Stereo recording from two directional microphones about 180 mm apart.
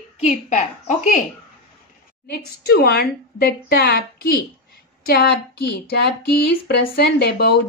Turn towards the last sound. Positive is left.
turn(degrees=65)  # may be behind; listen again after turning